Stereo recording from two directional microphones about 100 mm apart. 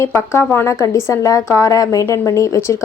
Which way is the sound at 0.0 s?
30° left (ahead or behind).